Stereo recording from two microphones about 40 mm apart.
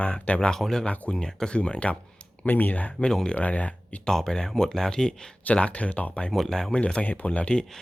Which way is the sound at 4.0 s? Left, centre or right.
Centre.